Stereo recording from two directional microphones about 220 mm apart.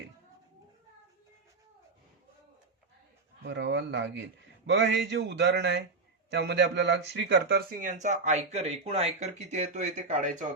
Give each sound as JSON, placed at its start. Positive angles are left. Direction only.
{"t": 3.4, "sound": "a man's voice", "side_deg": -55}